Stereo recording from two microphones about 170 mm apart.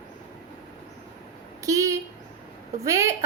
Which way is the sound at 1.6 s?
20° right (ahead or behind).